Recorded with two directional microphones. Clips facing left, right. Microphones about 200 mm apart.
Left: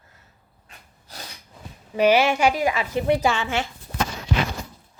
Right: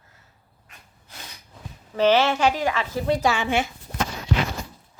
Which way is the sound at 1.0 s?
35° left (ahead or behind).